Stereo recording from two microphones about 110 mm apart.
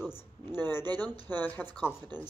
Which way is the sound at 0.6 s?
20° left (ahead or behind).